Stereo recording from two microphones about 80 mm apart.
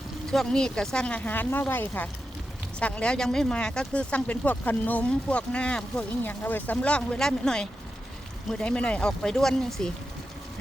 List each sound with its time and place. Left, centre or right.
0.3 s speech: centre